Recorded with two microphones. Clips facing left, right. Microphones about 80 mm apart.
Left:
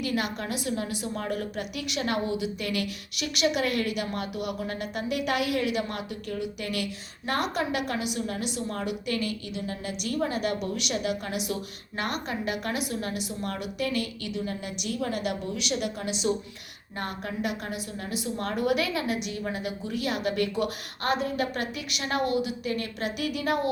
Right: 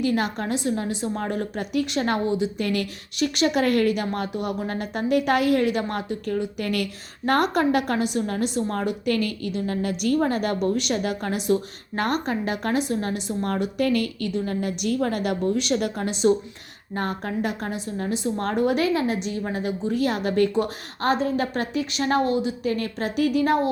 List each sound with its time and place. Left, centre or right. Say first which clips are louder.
0.0 s a woman's voice: right 6 dB; right